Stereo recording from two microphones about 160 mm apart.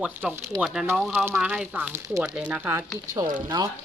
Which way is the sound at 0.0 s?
5° right (ahead or behind).